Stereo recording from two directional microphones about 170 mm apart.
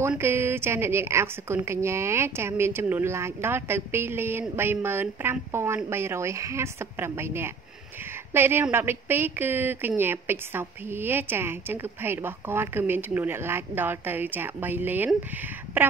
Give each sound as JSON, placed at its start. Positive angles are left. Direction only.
{"t": 0.1, "sound": "a woman's voice", "side_deg": -15}